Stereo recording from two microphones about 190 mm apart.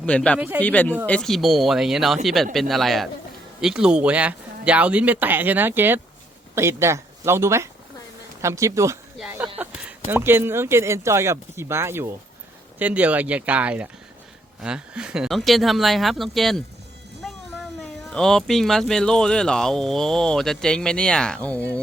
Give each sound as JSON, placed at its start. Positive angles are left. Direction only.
{"t": 0.0, "sound": "speech", "side_deg": 5}
{"t": 0.3, "sound": "speech", "side_deg": -10}
{"t": 0.6, "sound": "speech", "side_deg": 10}
{"t": 9.1, "sound": "speech", "side_deg": -5}